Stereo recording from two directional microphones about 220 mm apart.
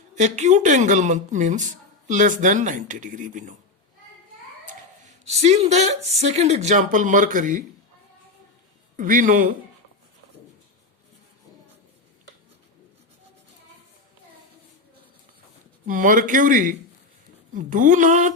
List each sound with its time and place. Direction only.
0.2 s speech: 35° right (ahead or behind)
5.0 s speech: 30° right (ahead or behind)
9.0 s speech: 35° right (ahead or behind)
15.9 s speech: 40° right (ahead or behind)